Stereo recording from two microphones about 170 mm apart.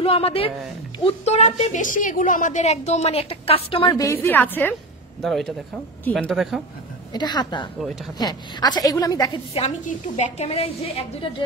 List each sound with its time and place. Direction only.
0.0 s a woman's voice: 35° left (ahead or behind); by 6.6 s centre (ahead or behind)
7.1 s a woman's voice: 25° left (ahead or behind)
7.8 s a woman's voice: centre (ahead or behind)
8.2 s a woman's voice: 25° left (ahead or behind)
9.8 s a woman's voice: 45° left (ahead or behind)